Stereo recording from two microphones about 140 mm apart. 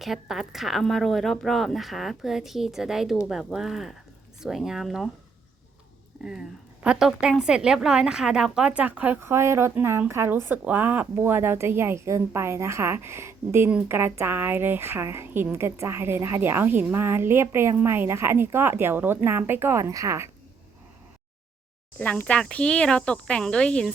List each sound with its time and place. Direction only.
0.0 s speech: centre (ahead or behind)
6.2 s a woman's voice: 5° right (ahead or behind); by 20.3 s 20° right (ahead or behind)
21.9 s speech: 10° left (ahead or behind)